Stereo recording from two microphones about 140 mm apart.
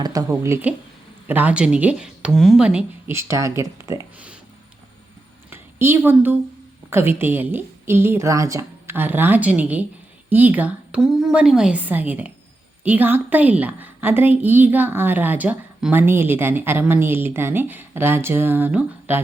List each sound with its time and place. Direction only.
0.0 s a woman's voice: 25° right (ahead or behind); by 2.8 s 5° right (ahead or behind)
3.1 s speech: 20° right (ahead or behind)
5.5 s a sound: 15° right (ahead or behind)
6.9 s a woman's voice: 15° right (ahead or behind)